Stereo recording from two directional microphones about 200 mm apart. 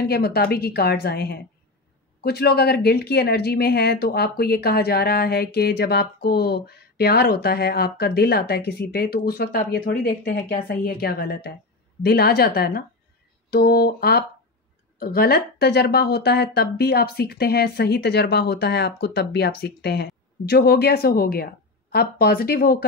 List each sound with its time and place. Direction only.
0.1 s a woman's voice: 50° left (ahead or behind)